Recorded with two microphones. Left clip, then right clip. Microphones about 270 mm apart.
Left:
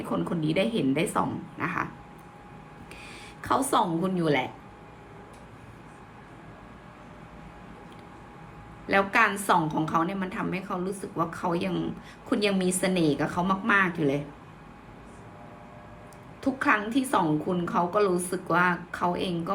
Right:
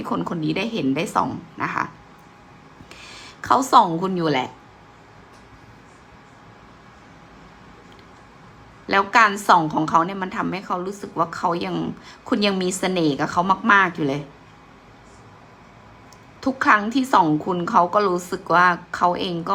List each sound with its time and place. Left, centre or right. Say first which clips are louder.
0.0 s a woman's voice: right 5 dB; centre
2.9 s speech: right 5 dB; centre
8.9 s a woman's voice: right 6 dB; centre
16.4 s a woman's voice: right 7 dB; centre